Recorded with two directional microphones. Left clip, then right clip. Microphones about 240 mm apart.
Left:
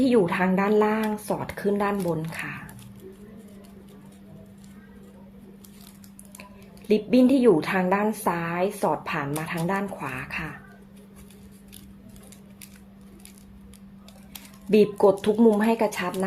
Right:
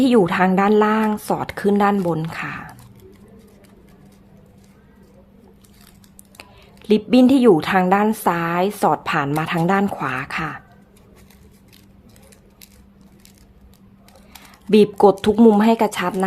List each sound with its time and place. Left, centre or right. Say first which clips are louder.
0.0 s a woman's voice: right 6 dB; right
6.8 s a woman's voice: right 5 dB; right
14.7 s a woman's voice: right 5 dB; right